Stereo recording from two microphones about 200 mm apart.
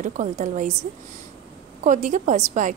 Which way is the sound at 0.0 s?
40° right (ahead or behind).